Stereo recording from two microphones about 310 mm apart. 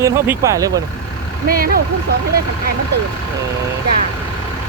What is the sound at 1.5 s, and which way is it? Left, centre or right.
Speech, right.